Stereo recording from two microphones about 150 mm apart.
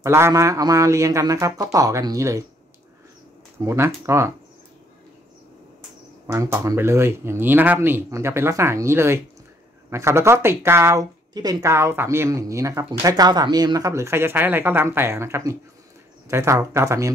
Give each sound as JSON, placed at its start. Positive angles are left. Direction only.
{"t": 0.0, "sound": "speech", "side_deg": -20}
{"t": 3.5, "sound": "speech", "side_deg": -20}
{"t": 6.2, "sound": "speech", "side_deg": -20}